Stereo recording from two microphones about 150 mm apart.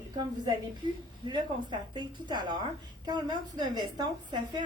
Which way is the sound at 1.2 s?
30° right (ahead or behind).